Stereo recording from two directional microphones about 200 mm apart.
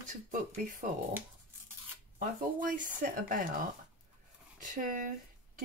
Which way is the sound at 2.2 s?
40° right (ahead or behind).